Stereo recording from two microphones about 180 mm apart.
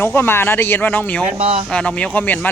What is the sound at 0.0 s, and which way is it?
Speech, 10° left (ahead or behind).